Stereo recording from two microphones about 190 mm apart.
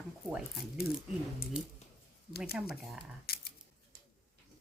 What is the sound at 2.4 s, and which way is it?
Speech, 5° right (ahead or behind).